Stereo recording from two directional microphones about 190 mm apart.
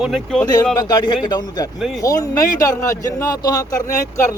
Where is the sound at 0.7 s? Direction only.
20° left (ahead or behind).